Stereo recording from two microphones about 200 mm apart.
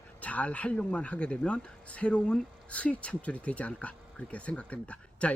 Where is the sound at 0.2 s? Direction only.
5° left (ahead or behind).